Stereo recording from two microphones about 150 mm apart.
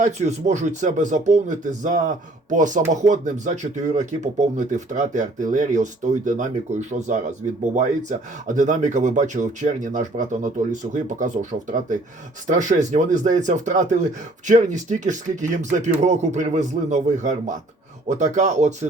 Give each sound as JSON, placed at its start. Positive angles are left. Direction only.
{"t": 0.0, "sound": "speech", "side_deg": -50}
{"t": 8.4, "sound": "speech", "side_deg": -55}